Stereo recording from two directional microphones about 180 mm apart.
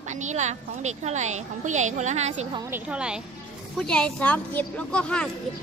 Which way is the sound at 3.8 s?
5° left (ahead or behind).